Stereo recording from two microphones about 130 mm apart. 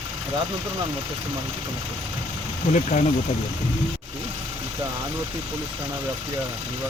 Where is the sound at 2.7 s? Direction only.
75° left (ahead or behind).